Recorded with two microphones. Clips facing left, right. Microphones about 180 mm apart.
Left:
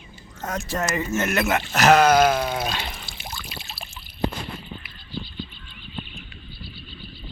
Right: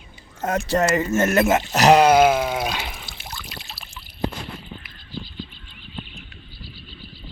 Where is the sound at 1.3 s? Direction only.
25° right (ahead or behind).